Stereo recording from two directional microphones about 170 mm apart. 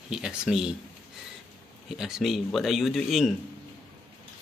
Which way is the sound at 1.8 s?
Centre (ahead or behind).